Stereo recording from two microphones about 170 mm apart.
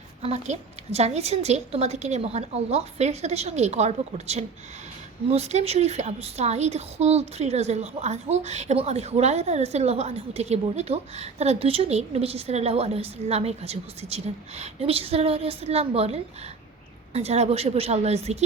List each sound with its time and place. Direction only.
0.2 s a woman's voice: 40° right (ahead or behind)